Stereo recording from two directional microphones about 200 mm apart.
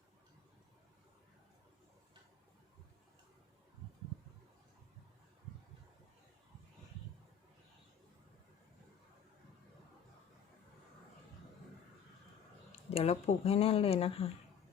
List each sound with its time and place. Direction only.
12.7 s speech: 30° left (ahead or behind)